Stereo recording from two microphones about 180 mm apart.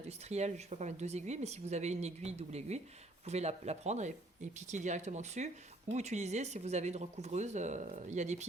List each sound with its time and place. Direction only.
0.1 s speech: 40° right (ahead or behind)